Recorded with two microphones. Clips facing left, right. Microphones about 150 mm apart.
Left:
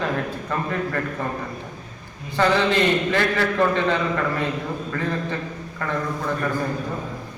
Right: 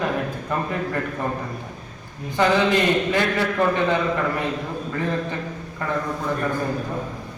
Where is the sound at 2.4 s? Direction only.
15° right (ahead or behind).